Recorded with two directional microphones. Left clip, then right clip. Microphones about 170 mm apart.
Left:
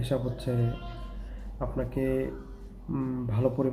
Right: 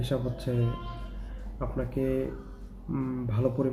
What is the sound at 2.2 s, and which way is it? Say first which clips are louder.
Speech: even; centre (ahead or behind).